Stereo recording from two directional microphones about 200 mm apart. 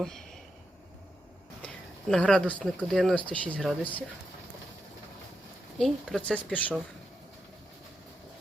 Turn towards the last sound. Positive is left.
turn(degrees=5)  # may be behind; listen again after turning